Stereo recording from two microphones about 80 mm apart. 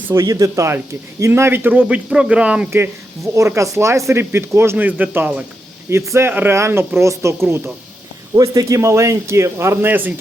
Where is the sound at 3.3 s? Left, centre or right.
Right.